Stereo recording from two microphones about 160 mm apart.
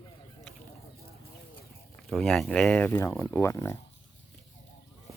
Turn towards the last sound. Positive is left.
turn(degrees=15)  # may be behind; listen again after turning